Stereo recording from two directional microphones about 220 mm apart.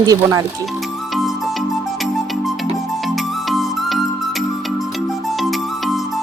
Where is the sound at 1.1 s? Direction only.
Centre (ahead or behind).